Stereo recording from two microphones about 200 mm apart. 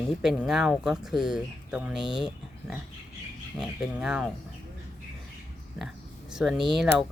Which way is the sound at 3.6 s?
Centre (ahead or behind).